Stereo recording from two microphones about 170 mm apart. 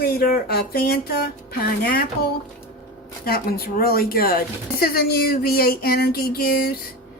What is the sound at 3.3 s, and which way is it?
Speech, 65° left (ahead or behind).